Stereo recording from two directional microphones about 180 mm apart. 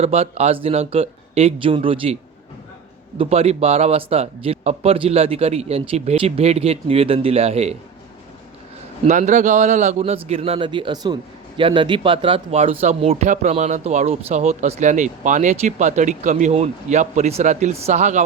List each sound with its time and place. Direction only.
0.0 s speech: 35° right (ahead or behind)
3.2 s speech: 35° right (ahead or behind)
9.0 s a man's voice: 40° right (ahead or behind)